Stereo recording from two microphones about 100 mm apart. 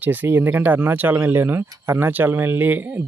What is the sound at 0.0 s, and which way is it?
Speech, 15° right (ahead or behind).